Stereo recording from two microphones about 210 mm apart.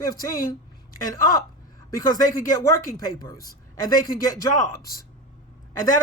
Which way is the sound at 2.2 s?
40° left (ahead or behind).